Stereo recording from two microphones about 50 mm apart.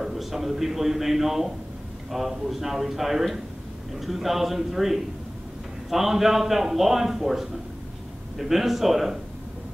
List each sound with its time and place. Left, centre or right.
0.0 s a man's voice: centre